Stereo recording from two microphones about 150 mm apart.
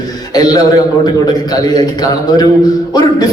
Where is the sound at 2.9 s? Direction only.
25° left (ahead or behind).